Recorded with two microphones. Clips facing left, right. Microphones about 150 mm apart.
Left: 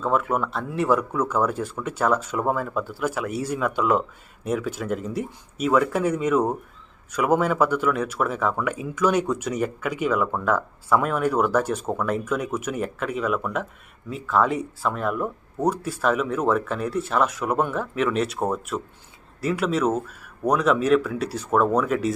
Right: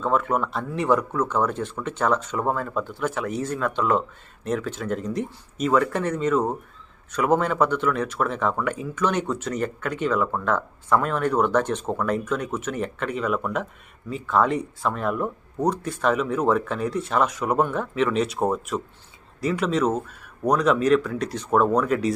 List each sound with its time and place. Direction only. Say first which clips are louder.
0.0 s speech: even; 5° left (ahead or behind)